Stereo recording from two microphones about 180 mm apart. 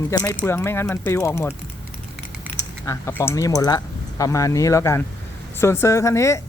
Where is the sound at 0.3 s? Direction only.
10° left (ahead or behind).